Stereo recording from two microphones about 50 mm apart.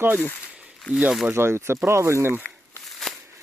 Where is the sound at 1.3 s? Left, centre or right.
Right.